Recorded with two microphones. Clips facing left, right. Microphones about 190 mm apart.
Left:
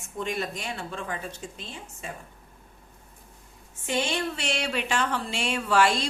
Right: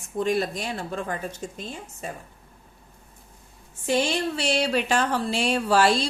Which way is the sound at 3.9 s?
35° right (ahead or behind).